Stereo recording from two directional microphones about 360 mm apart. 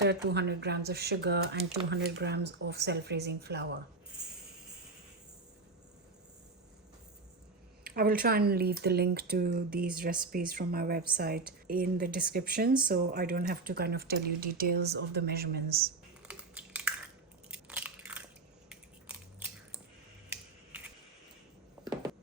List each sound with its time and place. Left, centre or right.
0.0 s speech: right
7.9 s speech: right
16.2 s a sound: centre
17.5 s biting: centre
18.7 s scissors: centre
20.3 s a sound: centre